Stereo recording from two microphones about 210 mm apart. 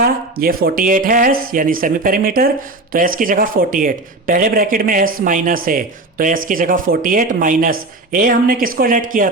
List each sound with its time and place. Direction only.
0.0 s speech: 45° right (ahead or behind)